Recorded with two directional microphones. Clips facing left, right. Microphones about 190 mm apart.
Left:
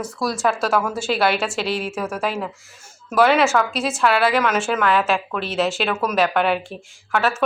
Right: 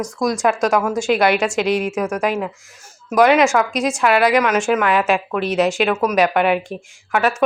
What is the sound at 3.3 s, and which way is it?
A woman's voice, centre (ahead or behind).